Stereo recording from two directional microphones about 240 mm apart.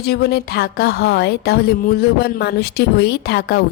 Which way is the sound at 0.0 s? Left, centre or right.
Left.